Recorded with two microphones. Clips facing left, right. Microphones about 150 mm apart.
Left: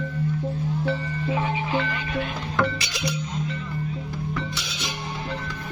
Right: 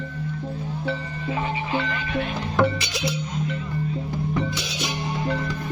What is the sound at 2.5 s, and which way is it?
Music, 20° right (ahead or behind).